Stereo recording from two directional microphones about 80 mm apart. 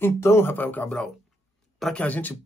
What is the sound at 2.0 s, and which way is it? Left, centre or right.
Speech, left.